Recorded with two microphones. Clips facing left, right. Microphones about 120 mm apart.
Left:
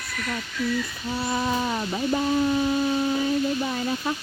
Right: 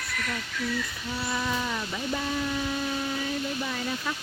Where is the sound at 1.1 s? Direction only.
30° left (ahead or behind).